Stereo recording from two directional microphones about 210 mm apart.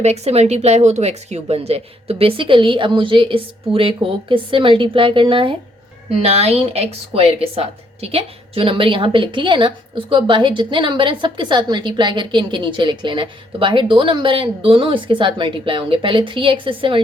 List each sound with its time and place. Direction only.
0.0 s a woman's voice: 30° right (ahead or behind)